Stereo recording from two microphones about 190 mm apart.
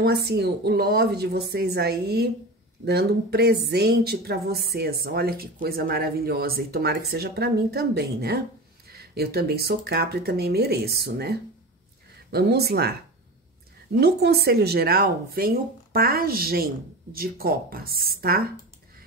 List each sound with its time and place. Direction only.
0.0 s speech: 55° right (ahead or behind)
13.9 s speech: 55° right (ahead or behind)